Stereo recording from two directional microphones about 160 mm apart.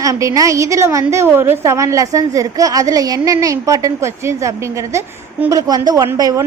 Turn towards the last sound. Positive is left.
turn(degrees=-20)  # may be behind; listen again after turning